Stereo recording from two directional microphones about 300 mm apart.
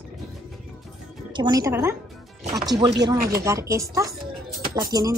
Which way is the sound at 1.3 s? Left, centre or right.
Centre.